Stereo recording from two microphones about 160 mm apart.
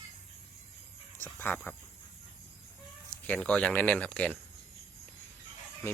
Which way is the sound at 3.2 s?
5° left (ahead or behind).